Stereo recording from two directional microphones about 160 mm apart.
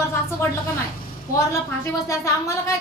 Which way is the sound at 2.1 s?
20° left (ahead or behind).